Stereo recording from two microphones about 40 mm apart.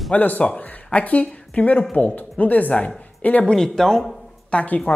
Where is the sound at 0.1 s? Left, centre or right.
Left.